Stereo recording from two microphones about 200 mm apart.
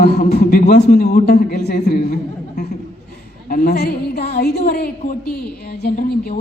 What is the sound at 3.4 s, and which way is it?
A man's voice, 45° left (ahead or behind).